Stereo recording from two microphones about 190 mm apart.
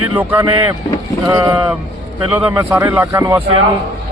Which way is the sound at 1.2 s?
15° right (ahead or behind).